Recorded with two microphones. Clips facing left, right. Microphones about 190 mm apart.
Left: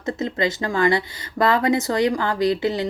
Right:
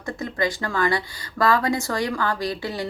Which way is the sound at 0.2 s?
20° left (ahead or behind).